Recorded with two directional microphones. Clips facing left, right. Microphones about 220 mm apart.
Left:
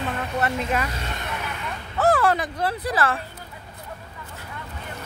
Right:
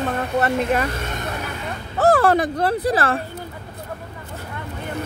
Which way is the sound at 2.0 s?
35° right (ahead or behind).